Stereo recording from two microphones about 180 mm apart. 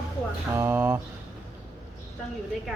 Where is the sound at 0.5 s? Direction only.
15° right (ahead or behind).